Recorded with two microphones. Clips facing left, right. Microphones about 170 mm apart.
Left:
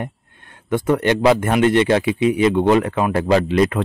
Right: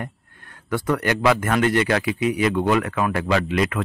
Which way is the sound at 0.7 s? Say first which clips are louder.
Left 5 dB; 25° left (ahead or behind).